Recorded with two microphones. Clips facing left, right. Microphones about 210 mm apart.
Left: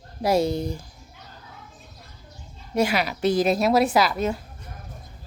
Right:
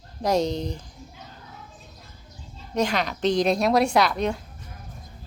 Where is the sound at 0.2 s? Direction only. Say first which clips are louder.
Left 2 dB; 10° left (ahead or behind).